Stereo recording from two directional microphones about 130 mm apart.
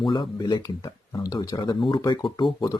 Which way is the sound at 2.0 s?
30° left (ahead or behind).